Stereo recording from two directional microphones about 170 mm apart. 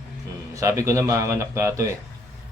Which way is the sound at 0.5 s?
20° right (ahead or behind).